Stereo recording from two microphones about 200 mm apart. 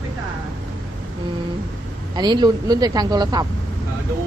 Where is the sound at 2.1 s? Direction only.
20° right (ahead or behind).